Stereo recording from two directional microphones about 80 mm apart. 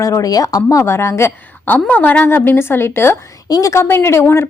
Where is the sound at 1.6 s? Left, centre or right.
Left.